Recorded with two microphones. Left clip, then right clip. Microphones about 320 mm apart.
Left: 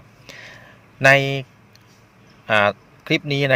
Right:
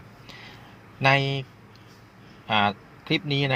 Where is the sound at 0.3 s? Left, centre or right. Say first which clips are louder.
Left 5 dB; left.